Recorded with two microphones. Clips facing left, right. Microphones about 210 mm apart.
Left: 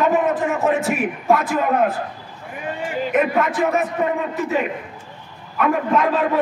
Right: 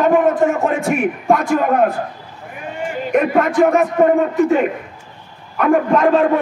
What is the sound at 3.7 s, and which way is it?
Speech, 45° right (ahead or behind).